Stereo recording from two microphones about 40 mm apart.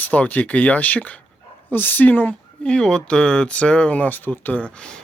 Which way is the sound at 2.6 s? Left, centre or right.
Left.